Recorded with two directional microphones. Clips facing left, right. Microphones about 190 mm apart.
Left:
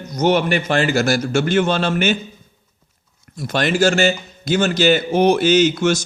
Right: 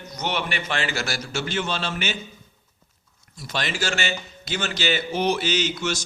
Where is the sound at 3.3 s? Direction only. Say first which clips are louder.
Left 11 dB; 55° left (ahead or behind).